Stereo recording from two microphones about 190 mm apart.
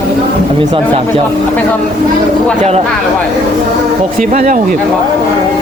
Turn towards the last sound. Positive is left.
turn(degrees=-40)  # may be behind; listen again after turning